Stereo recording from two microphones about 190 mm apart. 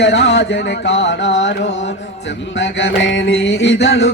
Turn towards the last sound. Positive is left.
turn(degrees=65)  # may be behind; listen again after turning